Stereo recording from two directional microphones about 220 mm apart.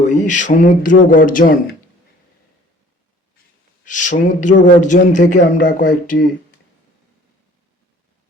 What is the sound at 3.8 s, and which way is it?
A man's voice, 35° left (ahead or behind).